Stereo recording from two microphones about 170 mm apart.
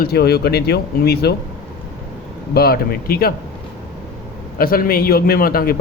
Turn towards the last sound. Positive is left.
turn(degrees=60)  # may be behind; listen again after turning